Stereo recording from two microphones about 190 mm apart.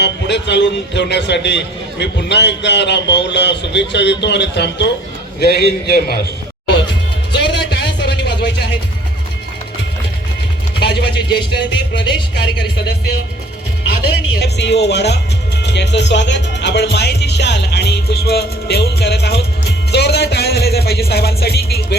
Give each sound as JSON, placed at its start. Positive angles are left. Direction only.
{"t": 0.0, "sound": "a man's voice", "side_deg": 65}
{"t": 7.3, "sound": "a sound", "side_deg": 60}
{"t": 10.8, "sound": "speech", "side_deg": 60}
{"t": 14.4, "sound": "a man's voice", "side_deg": 65}